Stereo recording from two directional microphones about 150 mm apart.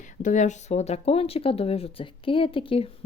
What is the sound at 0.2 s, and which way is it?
Speech, 55° left (ahead or behind).